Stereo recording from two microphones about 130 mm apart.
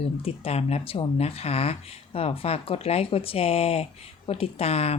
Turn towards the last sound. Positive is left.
turn(degrees=50)  # may be behind; listen again after turning